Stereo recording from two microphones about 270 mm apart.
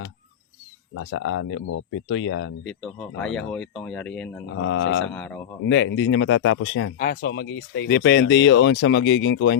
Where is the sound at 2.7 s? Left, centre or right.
Centre.